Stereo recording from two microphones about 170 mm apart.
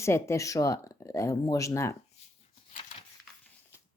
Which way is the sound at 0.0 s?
15° left (ahead or behind).